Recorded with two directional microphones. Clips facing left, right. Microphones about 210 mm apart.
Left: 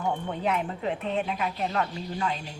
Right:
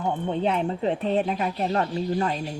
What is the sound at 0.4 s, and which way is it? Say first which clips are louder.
Speech: right 3 dB; 30° right (ahead or behind).